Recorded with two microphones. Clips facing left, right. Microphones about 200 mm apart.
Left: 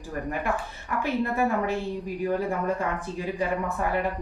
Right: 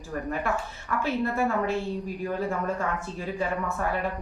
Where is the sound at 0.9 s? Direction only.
15° left (ahead or behind).